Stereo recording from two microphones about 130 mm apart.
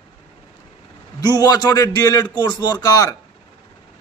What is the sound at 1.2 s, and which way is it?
A man's voice, 30° left (ahead or behind).